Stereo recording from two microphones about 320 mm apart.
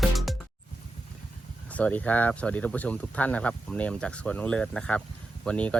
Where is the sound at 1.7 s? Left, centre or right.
Centre.